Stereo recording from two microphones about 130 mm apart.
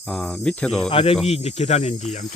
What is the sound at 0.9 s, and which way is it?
Speech, 45° left (ahead or behind).